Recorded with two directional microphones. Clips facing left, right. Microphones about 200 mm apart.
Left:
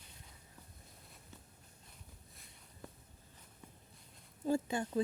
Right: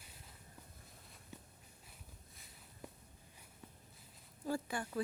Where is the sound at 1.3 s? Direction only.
15° right (ahead or behind).